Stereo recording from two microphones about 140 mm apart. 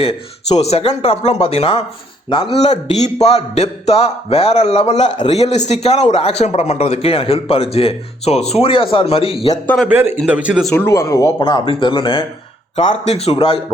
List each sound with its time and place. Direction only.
0.0 s speech: 45° left (ahead or behind)
9.6 s a man's voice: 5° left (ahead or behind)
10.2 s speech: 10° right (ahead or behind)
10.8 s speech: 20° left (ahead or behind)
11.3 s speech: 35° left (ahead or behind)
13.1 s speech: 45° left (ahead or behind)